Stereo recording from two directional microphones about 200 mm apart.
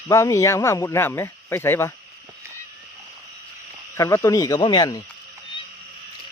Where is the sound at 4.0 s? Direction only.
15° left (ahead or behind).